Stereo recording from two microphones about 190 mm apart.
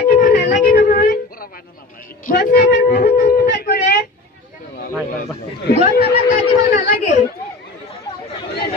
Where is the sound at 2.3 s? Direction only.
45° left (ahead or behind).